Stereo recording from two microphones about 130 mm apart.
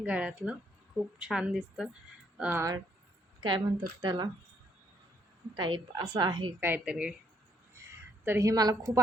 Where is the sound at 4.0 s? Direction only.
35° right (ahead or behind).